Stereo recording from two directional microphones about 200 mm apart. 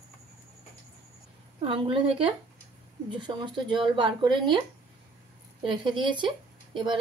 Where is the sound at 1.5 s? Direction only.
25° right (ahead or behind).